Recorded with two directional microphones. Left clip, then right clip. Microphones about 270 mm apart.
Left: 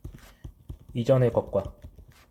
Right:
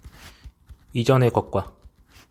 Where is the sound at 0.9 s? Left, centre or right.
Right.